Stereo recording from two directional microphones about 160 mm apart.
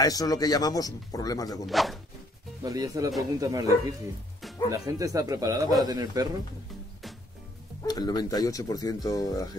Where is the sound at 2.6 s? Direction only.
25° right (ahead or behind).